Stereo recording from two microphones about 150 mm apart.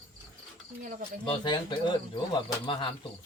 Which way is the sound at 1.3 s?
30° left (ahead or behind).